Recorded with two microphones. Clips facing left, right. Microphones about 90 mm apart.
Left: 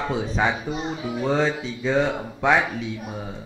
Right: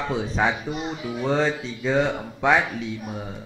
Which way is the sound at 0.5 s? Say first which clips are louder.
Left 1 dB; 20° left (ahead or behind).